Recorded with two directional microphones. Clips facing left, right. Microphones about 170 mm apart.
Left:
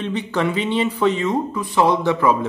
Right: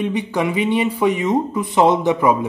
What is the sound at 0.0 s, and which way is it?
Speech, 15° right (ahead or behind).